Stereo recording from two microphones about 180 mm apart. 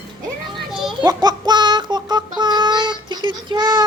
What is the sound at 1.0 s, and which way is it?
Child singing, 25° right (ahead or behind).